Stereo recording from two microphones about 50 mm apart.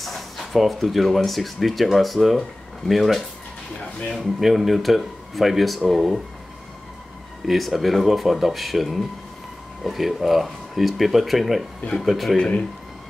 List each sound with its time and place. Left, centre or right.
0.0 s speech: centre
7.4 s speech: centre
12.4 s speech: left